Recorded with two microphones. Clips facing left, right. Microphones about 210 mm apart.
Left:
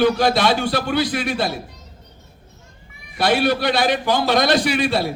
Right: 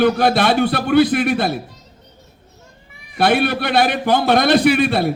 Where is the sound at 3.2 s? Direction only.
55° right (ahead or behind).